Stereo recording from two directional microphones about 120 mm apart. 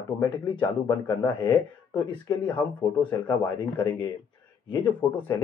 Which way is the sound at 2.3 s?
30° left (ahead or behind).